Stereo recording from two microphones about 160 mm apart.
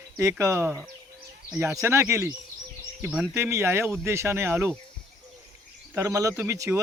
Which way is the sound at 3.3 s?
15° right (ahead or behind).